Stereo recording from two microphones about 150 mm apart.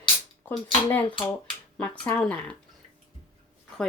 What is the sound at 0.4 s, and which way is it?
Speech, 10° left (ahead or behind).